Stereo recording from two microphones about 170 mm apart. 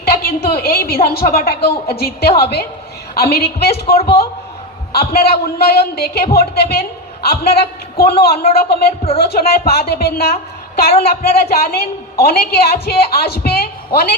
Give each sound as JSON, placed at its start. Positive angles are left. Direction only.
{"t": 0.0, "sound": "a woman's voice", "side_deg": 65}